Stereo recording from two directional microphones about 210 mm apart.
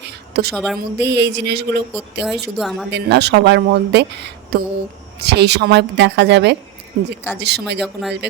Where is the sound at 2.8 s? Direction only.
55° right (ahead or behind).